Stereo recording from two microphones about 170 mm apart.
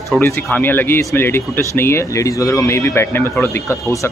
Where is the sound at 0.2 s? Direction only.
10° left (ahead or behind).